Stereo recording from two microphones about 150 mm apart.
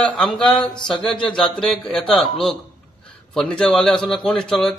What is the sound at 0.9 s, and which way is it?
A man's voice, 5° left (ahead or behind).